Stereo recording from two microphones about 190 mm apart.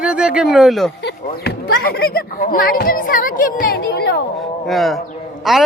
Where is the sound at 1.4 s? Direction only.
55° left (ahead or behind).